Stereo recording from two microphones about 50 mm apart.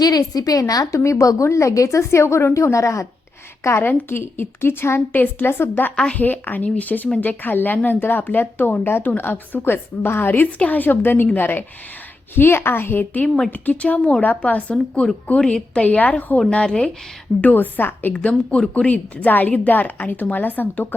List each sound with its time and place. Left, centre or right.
0.6 s a woman's voice: left
3.6 s a woman's voice: left
4.1 s a woman's voice: left
13.2 s speech: centre
13.5 s a woman's voice: left
16.6 s speech: centre
17.4 s a woman's voice: left
18.1 s a woman's voice: left